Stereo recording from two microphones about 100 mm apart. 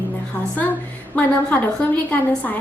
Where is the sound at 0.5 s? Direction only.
15° left (ahead or behind).